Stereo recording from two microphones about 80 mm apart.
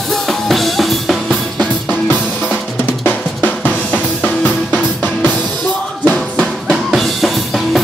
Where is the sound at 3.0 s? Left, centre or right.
Left.